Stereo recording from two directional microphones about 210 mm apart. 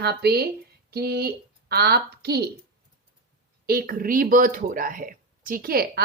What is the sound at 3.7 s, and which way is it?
Speech, 45° right (ahead or behind).